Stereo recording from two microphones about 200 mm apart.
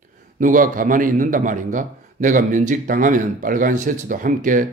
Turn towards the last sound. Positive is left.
turn(degrees=-40)  # may be behind; listen again after turning